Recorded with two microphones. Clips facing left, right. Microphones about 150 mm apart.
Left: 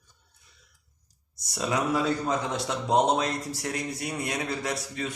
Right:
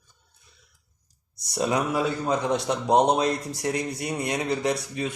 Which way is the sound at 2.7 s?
15° right (ahead or behind).